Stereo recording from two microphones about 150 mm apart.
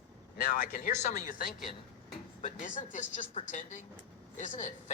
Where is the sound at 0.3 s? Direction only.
70° left (ahead or behind).